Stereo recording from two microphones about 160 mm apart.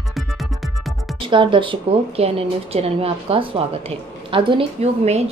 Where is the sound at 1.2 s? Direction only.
30° right (ahead or behind).